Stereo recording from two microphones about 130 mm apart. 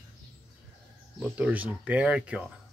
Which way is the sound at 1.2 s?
10° right (ahead or behind).